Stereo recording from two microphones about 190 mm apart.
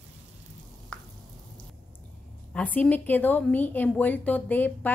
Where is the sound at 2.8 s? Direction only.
10° left (ahead or behind).